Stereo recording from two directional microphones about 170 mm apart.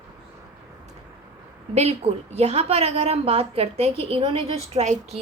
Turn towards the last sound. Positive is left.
turn(degrees=-40)  # may be behind; listen again after turning